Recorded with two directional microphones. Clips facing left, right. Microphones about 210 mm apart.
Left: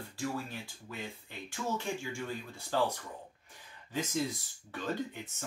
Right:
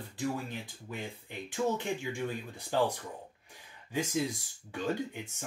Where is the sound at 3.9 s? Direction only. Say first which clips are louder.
Right 2 dB; 15° right (ahead or behind).